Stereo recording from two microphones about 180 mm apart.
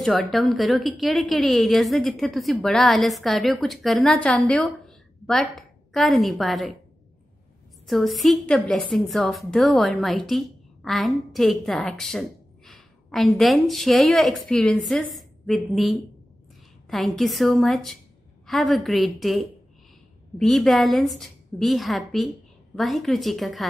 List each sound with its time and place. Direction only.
0.0 s a woman's voice: centre (ahead or behind)
7.8 s a woman's voice: centre (ahead or behind)